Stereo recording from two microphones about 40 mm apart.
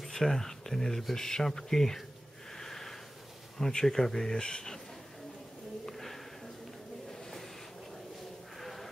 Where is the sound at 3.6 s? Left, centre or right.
Centre.